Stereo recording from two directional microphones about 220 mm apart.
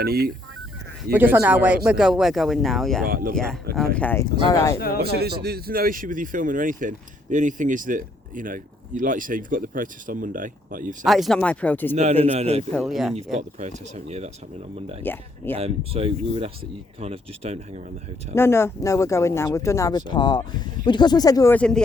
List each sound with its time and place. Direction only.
0.0 s speech: 45° right (ahead or behind)
1.1 s speech: 10° right (ahead or behind)
3.1 s speech: 40° right (ahead or behind)
3.3 s speech: centre (ahead or behind)
5.2 s speech: 45° right (ahead or behind)
11.0 s speech: centre (ahead or behind)
11.9 s speech: 30° right (ahead or behind)
12.7 s speech: centre (ahead or behind)
13.6 s speech: 30° right (ahead or behind)
15.0 s speech: 10° left (ahead or behind)
15.5 s speech: 25° right (ahead or behind)
18.3 s speech: 10° left (ahead or behind)